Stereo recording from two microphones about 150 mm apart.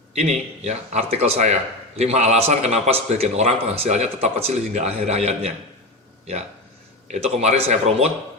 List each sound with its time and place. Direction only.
0.1 s speech: 45° right (ahead or behind)
7.1 s speech: 45° right (ahead or behind)